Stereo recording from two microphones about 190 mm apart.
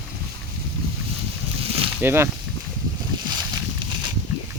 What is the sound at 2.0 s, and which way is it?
Speech, 10° right (ahead or behind).